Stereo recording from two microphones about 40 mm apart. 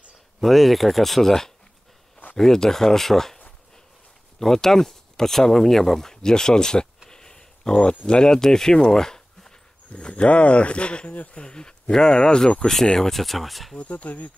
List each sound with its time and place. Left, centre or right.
0.4 s speech: centre
4.4 s speech: centre
7.1 s a sound: centre
8.1 s speech: centre
9.9 s speech: left; by 13.7 s centre
13.7 s speech: left